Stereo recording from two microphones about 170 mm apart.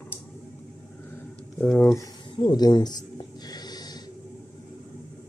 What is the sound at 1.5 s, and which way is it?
Speech, 10° left (ahead or behind).